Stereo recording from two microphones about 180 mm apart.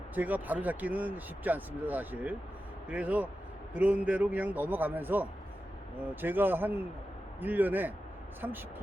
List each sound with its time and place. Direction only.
0.1 s speech: 10° right (ahead or behind)